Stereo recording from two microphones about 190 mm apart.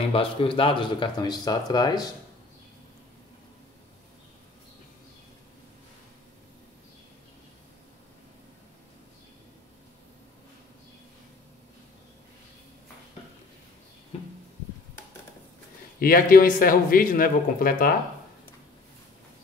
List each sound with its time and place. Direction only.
0.1 s speech: 30° left (ahead or behind)
14.1 s a sound: 30° left (ahead or behind)
16.0 s speech: 50° left (ahead or behind)